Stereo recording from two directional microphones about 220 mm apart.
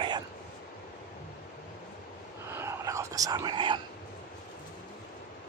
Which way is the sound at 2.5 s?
15° right (ahead or behind).